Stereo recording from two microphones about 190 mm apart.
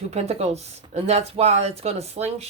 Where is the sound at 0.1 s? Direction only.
35° right (ahead or behind).